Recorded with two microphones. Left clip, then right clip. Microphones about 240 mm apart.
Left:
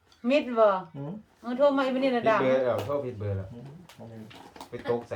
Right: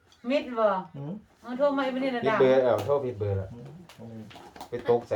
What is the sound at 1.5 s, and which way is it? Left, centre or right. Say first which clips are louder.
Speech: left 2 dB; left.